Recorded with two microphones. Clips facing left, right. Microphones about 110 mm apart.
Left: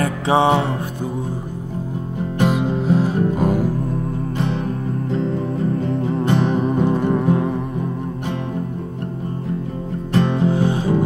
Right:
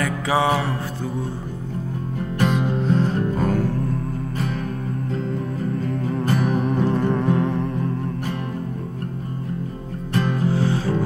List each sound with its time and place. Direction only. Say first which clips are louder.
0.0 s music: left 4 dB; 25° left (ahead or behind)
2.4 s music: left 2 dB; 5° left (ahead or behind)
5.8 s music: left 4 dB; 25° left (ahead or behind)
6.9 s music: left 3 dB; 10° left (ahead or behind)
10.1 s music: left 4 dB; 30° left (ahead or behind)
10.5 s music: left 3 dB; 20° left (ahead or behind)